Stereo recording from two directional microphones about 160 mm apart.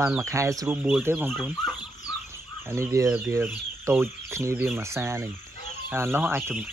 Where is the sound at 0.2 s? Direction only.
20° right (ahead or behind).